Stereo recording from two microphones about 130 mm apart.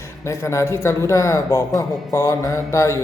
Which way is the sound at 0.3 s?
20° left (ahead or behind).